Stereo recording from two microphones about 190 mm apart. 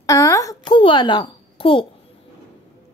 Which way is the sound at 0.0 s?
15° left (ahead or behind).